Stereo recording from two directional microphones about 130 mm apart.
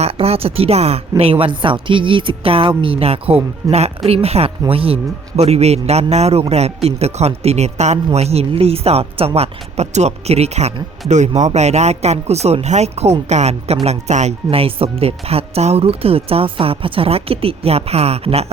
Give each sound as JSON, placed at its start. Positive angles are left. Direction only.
{"t": 0.0, "sound": "speech", "side_deg": -50}